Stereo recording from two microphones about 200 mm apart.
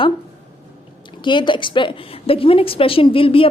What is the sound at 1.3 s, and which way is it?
A woman's voice, 25° left (ahead or behind).